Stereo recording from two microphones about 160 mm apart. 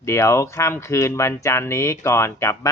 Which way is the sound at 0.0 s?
20° left (ahead or behind).